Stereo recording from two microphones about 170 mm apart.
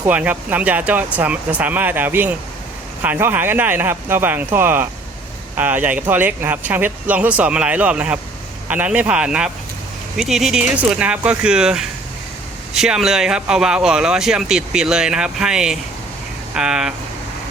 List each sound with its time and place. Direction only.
0.0 s speech: 10° right (ahead or behind)